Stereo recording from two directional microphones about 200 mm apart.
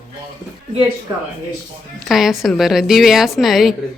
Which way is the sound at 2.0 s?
Centre (ahead or behind).